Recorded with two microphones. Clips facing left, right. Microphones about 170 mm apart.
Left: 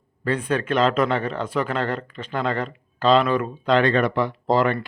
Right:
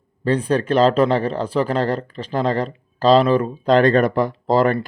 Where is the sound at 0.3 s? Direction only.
35° right (ahead or behind).